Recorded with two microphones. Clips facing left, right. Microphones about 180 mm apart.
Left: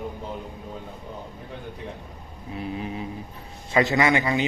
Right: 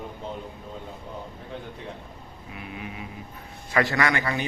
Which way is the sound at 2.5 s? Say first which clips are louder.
Left 7 dB; 30° left (ahead or behind).